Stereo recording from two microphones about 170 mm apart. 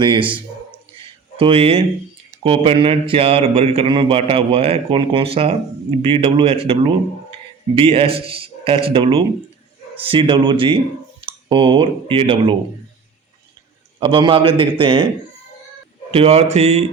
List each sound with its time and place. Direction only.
0.0 s a man's voice: 30° right (ahead or behind)
14.0 s a man's voice: 30° right (ahead or behind)
16.1 s speech: 40° right (ahead or behind)